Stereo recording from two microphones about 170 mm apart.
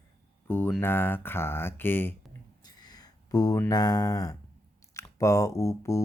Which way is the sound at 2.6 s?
25° left (ahead or behind).